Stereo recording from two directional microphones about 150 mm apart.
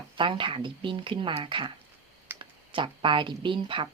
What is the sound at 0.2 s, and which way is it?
Speech, 35° right (ahead or behind).